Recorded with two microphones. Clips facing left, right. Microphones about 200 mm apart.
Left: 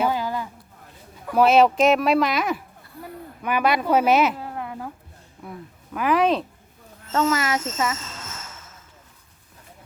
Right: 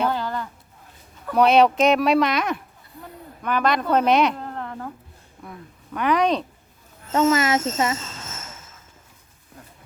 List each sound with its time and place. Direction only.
0.0 s a sound: 10° left (ahead or behind)
1.3 s a woman's voice: centre (ahead or behind)
7.1 s speech: 20° right (ahead or behind)